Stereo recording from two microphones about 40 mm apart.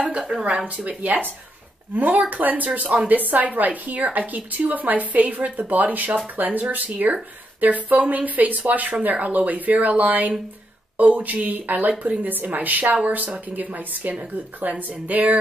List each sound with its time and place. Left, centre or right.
0.3 s a woman's voice: right
2.0 s a woman's voice: right